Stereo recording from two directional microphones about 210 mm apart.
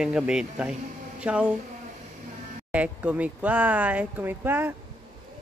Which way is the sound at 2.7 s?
5° right (ahead or behind).